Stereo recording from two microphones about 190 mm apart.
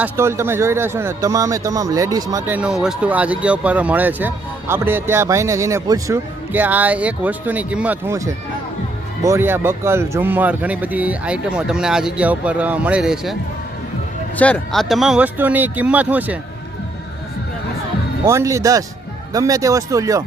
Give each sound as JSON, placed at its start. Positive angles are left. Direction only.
{"t": 0.0, "sound": "speech", "side_deg": -15}
{"t": 2.6, "sound": "speech", "side_deg": -5}
{"t": 14.3, "sound": "speech", "side_deg": 5}
{"t": 18.3, "sound": "speech", "side_deg": -15}